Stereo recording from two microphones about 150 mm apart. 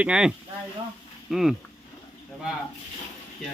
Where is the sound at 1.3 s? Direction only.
Centre (ahead or behind).